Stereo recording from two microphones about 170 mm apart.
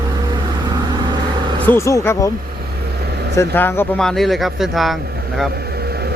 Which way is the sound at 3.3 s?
15° left (ahead or behind).